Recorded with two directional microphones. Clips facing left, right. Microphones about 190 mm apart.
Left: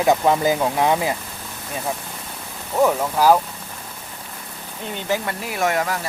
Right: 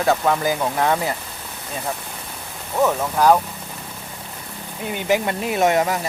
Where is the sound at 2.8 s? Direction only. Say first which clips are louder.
Left 1 dB; 10° left (ahead or behind).